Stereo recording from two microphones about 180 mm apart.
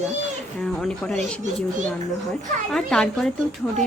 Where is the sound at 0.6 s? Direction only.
5° left (ahead or behind).